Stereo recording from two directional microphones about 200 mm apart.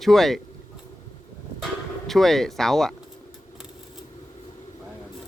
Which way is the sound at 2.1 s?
Centre (ahead or behind).